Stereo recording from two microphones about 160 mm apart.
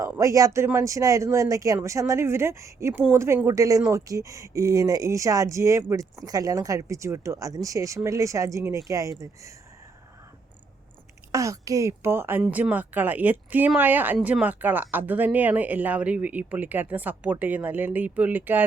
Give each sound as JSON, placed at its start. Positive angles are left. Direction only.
{"t": 0.0, "sound": "speech", "side_deg": -20}
{"t": 11.3, "sound": "speech", "side_deg": -20}